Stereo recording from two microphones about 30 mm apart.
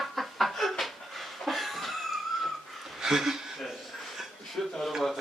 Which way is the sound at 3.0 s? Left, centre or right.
Centre.